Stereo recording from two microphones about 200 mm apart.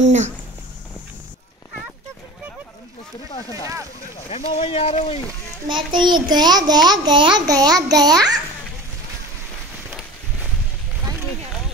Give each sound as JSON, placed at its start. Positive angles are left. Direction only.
{"t": 0.0, "sound": "speech", "side_deg": -35}
{"t": 3.4, "sound": "a sound", "side_deg": -15}
{"t": 4.3, "sound": "speech", "side_deg": 30}
{"t": 5.9, "sound": "a child's voice", "side_deg": -20}